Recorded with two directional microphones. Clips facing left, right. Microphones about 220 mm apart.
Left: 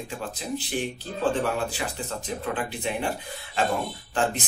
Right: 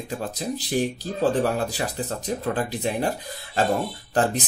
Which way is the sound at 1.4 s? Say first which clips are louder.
Right 3 dB; 40° right (ahead or behind).